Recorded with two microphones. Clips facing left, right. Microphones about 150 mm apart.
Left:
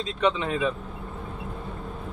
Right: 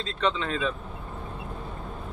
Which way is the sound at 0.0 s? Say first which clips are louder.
Left 3 dB; 15° left (ahead or behind).